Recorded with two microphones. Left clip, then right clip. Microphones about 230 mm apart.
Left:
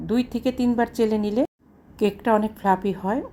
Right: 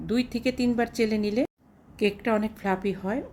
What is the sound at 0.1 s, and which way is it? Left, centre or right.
A woman's voice, centre.